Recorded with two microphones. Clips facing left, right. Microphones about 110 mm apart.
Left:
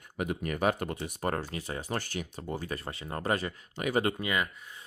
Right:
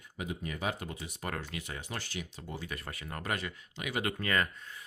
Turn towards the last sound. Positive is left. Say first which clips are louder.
# even
turn(degrees=10)  # may be behind; listen again after turning